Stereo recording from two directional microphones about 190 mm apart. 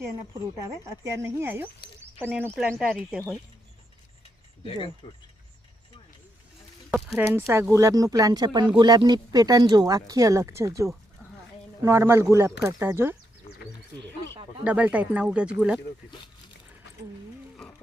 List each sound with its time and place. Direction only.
0.6 s speech: 15° right (ahead or behind)
1.8 s a sound: 60° left (ahead or behind)
2.3 s speech: 5° right (ahead or behind)
5.0 s speech: 25° left (ahead or behind)
6.9 s speech: 5° right (ahead or behind)
7.3 s speech: 15° right (ahead or behind)
11.2 s a sound: 5° left (ahead or behind)
11.8 s speech: 15° right (ahead or behind)
14.6 s speech: 5° right (ahead or behind)